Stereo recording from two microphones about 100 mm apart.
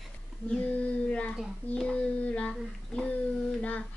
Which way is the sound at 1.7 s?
10° left (ahead or behind).